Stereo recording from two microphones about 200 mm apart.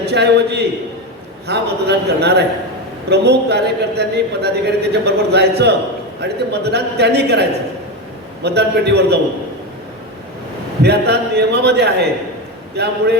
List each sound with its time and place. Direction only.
0.0 s a man's voice: 55° right (ahead or behind)
8.4 s a man's voice: 55° right (ahead or behind)
10.8 s a man's voice: 55° right (ahead or behind)